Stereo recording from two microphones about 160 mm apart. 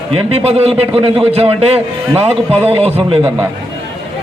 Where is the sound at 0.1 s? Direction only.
40° right (ahead or behind).